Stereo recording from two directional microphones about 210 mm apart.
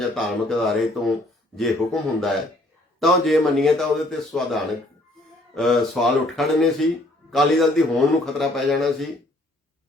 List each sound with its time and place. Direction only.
0.0 s speech: centre (ahead or behind)